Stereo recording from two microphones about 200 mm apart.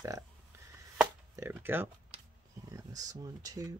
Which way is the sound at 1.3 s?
10° right (ahead or behind).